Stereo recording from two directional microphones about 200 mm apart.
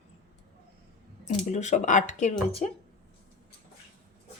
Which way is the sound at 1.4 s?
35° left (ahead or behind).